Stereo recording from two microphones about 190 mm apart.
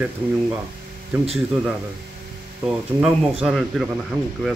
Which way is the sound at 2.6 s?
5° right (ahead or behind).